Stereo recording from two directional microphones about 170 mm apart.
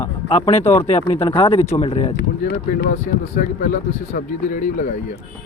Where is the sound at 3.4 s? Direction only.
50° left (ahead or behind).